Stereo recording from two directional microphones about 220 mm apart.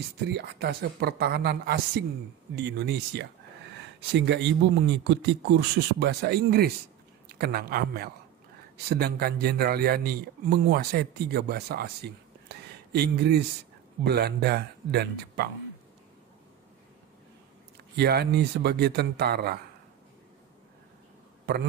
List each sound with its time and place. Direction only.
0.3 s a man's voice: 50° right (ahead or behind)
17.9 s a man's voice: 45° right (ahead or behind)